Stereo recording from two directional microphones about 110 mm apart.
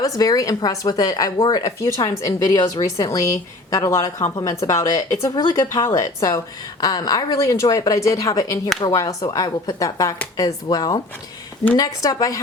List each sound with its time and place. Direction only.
0.0 s a woman's voice: 35° left (ahead or behind)